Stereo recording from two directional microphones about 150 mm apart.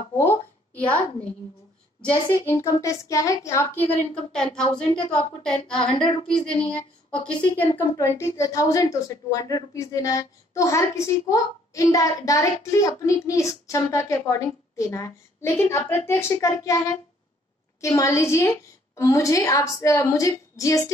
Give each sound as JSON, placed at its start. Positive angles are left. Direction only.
{"t": 0.2, "sound": "a sound", "side_deg": 10}
{"t": 2.0, "sound": "speech", "side_deg": 15}
{"t": 5.8, "sound": "a woman's voice", "side_deg": 35}
{"t": 7.5, "sound": "a woman's voice", "side_deg": 15}